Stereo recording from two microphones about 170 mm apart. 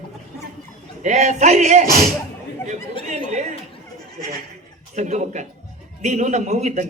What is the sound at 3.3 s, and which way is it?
Speech, 45° right (ahead or behind).